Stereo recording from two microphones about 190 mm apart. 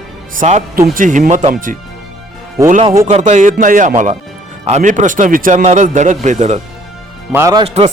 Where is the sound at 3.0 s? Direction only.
40° right (ahead or behind).